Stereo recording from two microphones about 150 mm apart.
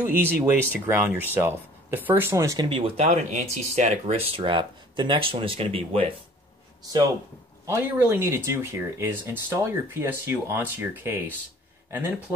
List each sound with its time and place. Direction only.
0.0 s speech: 15° right (ahead or behind)
3.0 s speech: 50° right (ahead or behind)
7.6 s speech: 15° right (ahead or behind)